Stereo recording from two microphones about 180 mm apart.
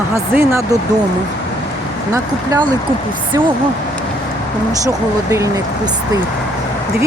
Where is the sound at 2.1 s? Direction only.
20° right (ahead or behind).